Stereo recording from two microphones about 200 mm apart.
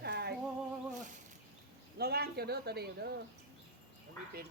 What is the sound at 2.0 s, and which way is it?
Speech, 50° right (ahead or behind).